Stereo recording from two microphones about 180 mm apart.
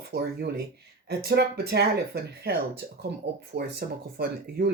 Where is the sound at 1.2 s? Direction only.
60° right (ahead or behind).